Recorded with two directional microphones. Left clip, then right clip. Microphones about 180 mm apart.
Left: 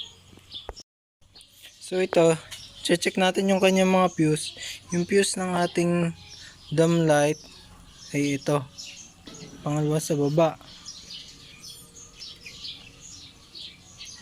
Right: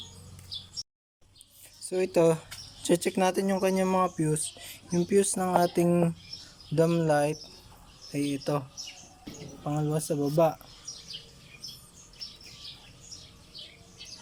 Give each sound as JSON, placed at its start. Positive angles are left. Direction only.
{"t": 1.9, "sound": "speech", "side_deg": -10}
{"t": 3.1, "sound": "speech", "side_deg": -5}
{"t": 9.6, "sound": "speech", "side_deg": -5}